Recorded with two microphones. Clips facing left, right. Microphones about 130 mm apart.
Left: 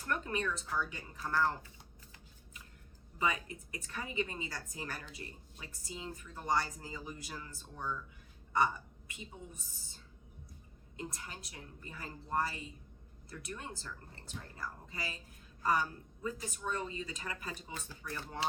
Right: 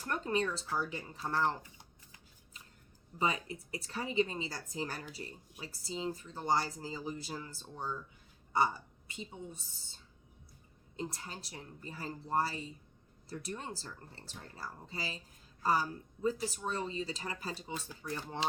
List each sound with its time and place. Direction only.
0.1 s speech: 30° right (ahead or behind)
3.2 s speech: 30° right (ahead or behind)